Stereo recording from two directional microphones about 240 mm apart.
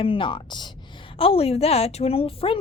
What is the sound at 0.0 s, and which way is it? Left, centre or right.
A woman's voice, left.